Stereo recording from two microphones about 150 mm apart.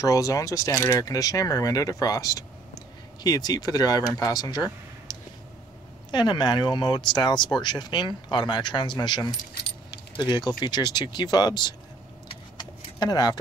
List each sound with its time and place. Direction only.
0.0 s speech: 20° left (ahead or behind)
5.1 s a sound: 30° left (ahead or behind)
6.1 s speech: 30° left (ahead or behind)
9.8 s keys jangling: 30° left (ahead or behind)
10.6 s speech: 30° left (ahead or behind)
12.5 s vehicle: 30° left (ahead or behind)